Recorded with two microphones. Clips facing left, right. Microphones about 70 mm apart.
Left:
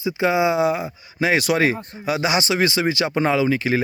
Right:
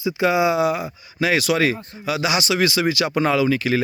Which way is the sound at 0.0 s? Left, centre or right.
Left.